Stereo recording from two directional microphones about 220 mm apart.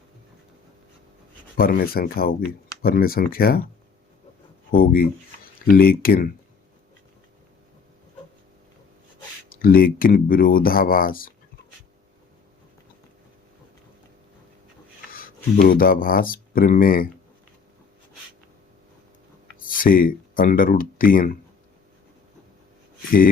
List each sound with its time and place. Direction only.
1.5 s speech: 40° left (ahead or behind)
4.7 s speech: 45° left (ahead or behind)
9.5 s speech: 40° left (ahead or behind)
15.1 s speech: 40° left (ahead or behind)
19.6 s speech: 40° left (ahead or behind)